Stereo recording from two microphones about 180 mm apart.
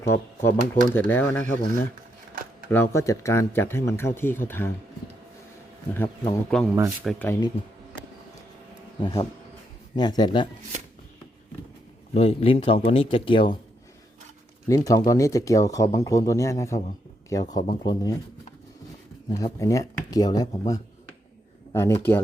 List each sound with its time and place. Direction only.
0.0 s a man's voice: 15° left (ahead or behind)
5.9 s a man's voice: 10° left (ahead or behind)
9.0 s speech: 25° left (ahead or behind)
12.1 s speech: 35° left (ahead or behind)
14.8 s a man's voice: 20° left (ahead or behind)
19.3 s a man's voice: 15° left (ahead or behind)